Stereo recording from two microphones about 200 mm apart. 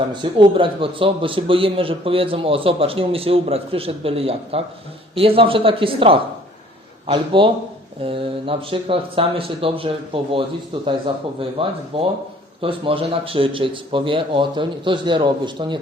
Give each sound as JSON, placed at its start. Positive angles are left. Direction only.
{"t": 0.1, "sound": "a man's voice", "side_deg": -25}